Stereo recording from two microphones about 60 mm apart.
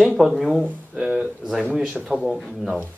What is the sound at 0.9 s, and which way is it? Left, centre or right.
Speech, centre.